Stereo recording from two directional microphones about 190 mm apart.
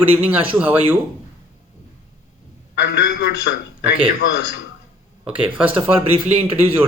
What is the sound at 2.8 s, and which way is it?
Speech, 60° left (ahead or behind).